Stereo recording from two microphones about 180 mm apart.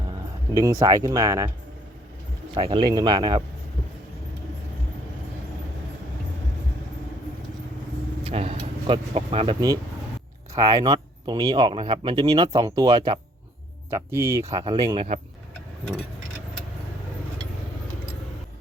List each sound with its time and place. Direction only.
0.1 s speech: 20° right (ahead or behind)
2.6 s speech: 25° right (ahead or behind)
8.2 s speech: 30° right (ahead or behind)